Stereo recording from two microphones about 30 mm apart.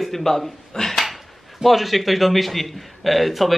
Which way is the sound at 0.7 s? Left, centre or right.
Centre.